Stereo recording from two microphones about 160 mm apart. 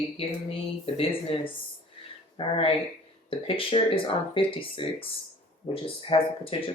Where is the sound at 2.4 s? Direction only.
35° left (ahead or behind).